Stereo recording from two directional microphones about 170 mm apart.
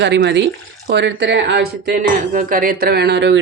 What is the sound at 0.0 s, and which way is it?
Speech, 90° right.